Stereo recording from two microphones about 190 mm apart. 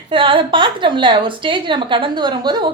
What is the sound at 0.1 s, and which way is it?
Speech, 25° right (ahead or behind).